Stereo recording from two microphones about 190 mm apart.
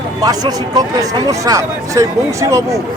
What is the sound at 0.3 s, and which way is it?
A man's voice, 20° right (ahead or behind).